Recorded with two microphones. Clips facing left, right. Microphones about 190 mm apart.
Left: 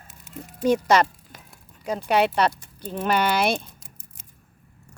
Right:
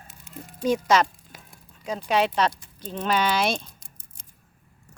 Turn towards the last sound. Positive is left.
turn(degrees=10)  # may be behind; listen again after turning